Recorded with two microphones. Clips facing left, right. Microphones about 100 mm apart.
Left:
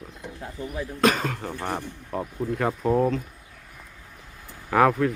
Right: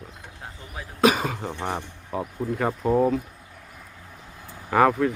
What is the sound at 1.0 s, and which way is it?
Speech, 10° right (ahead or behind).